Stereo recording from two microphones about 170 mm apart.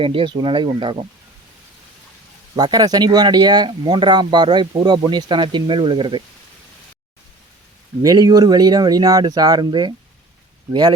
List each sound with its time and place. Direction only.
0.0 s speech: 30° right (ahead or behind)
2.6 s speech: 25° right (ahead or behind)
8.0 s speech: 25° right (ahead or behind)